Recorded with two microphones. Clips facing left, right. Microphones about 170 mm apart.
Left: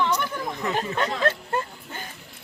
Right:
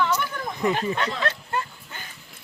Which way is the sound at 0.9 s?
45° left (ahead or behind).